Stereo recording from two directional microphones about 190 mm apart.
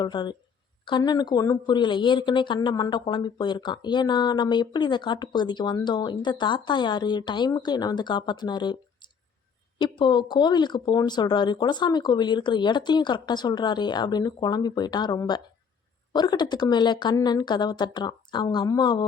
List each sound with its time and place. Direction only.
0.0 s speech: 25° left (ahead or behind)